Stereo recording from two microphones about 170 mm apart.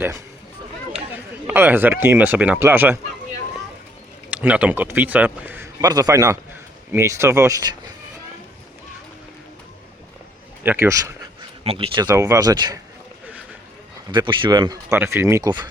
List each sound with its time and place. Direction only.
0.9 s speech: 10° right (ahead or behind)
4.3 s a man's voice: 5° right (ahead or behind)
5.8 s speech: 25° right (ahead or behind)
10.6 s a man's voice: 15° right (ahead or behind)
11.6 s speech: 35° right (ahead or behind)
12.0 s speech: 20° right (ahead or behind)
14.1 s speech: 30° right (ahead or behind)